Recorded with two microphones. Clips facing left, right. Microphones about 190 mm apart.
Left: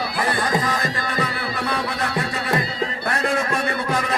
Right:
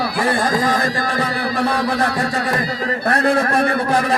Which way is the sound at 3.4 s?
60° right (ahead or behind).